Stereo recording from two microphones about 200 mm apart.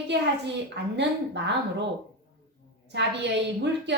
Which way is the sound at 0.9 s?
60° right (ahead or behind).